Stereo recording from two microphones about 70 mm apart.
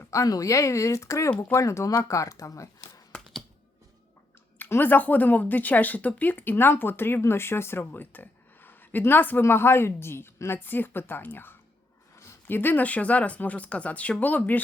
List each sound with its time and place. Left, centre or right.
0.1 s speech: left
4.5 s a woman's voice: left